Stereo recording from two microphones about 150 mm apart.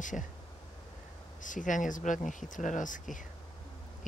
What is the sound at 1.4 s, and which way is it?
Speech, 60° left (ahead or behind).